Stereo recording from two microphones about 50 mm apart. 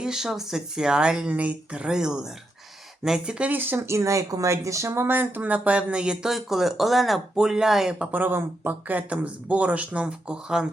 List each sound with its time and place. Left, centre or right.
0.0 s speech: centre
3.5 s speech: right
3.8 s speech: right
4.9 s speech: right; by 6.3 s centre
6.3 s speech: centre
7.3 s speech: centre
8.1 s speech: right; by 10.7 s centre